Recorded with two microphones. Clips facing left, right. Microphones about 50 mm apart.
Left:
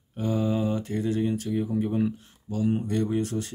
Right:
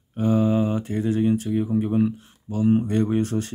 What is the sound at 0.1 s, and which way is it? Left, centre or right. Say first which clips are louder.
Speech: right 6 dB; right.